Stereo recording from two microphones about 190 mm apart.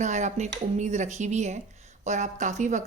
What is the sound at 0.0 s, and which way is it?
Speech, 40° right (ahead or behind).